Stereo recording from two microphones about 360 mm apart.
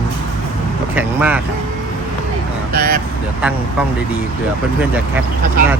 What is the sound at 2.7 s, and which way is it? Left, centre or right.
Speech, right.